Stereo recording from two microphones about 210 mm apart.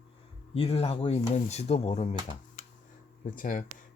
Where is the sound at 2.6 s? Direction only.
40° left (ahead or behind).